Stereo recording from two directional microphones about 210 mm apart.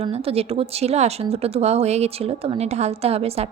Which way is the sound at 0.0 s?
30° right (ahead or behind).